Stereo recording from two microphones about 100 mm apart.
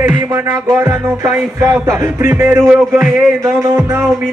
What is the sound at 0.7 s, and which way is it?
Music, 35° right (ahead or behind).